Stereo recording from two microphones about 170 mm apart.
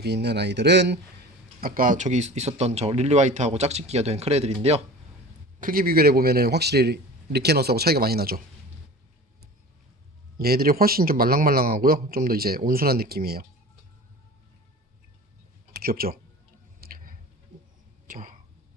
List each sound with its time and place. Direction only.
0.0 s speech: 80° right
1.6 s speech: 55° right (ahead or behind); by 4.8 s 40° right (ahead or behind)
5.5 s a man's voice: 55° right (ahead or behind)
10.3 s a man's voice: 65° right (ahead or behind)
15.7 s speech: 60° right (ahead or behind)
16.8 s squish: 55° right (ahead or behind)
18.1 s a sound: 50° right (ahead or behind)